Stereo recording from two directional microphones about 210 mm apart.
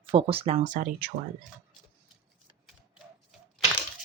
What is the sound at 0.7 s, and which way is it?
Speech, 40° right (ahead or behind).